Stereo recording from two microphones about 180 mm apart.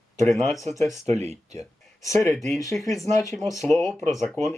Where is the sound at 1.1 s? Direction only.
40° right (ahead or behind).